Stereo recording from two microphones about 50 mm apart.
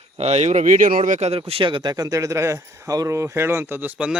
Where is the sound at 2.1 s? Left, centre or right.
Right.